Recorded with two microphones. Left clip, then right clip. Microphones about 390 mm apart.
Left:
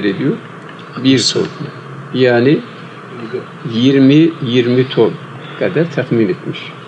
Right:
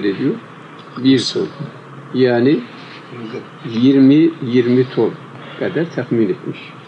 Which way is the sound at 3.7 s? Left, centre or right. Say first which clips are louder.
Left 2 dB; centre.